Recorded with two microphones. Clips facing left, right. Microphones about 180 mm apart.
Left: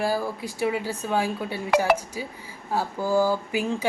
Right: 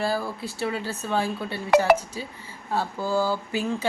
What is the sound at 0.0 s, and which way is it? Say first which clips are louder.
Speech: left 1 dB; 15° left (ahead or behind).